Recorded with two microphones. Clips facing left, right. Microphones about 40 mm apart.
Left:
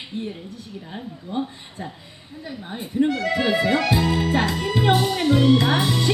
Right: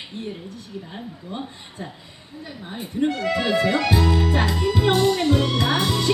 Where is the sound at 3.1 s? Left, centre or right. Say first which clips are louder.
Left 1 dB; centre.